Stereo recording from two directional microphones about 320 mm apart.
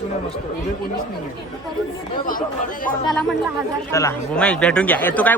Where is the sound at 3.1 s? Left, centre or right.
Centre.